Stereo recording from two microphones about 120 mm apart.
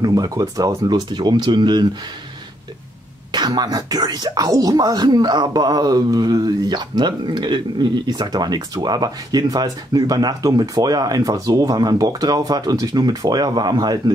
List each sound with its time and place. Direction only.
0.0 s speech: 30° right (ahead or behind)
3.3 s speech: 35° right (ahead or behind)